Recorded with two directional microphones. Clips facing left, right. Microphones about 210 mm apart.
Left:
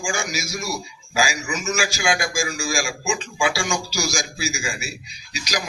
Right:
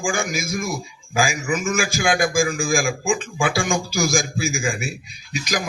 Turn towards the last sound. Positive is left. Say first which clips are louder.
# right 3 dB
turn(degrees=-50)  # may be behind; listen again after turning